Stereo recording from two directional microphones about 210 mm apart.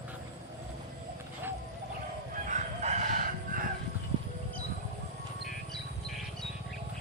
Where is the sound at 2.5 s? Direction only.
35° right (ahead or behind).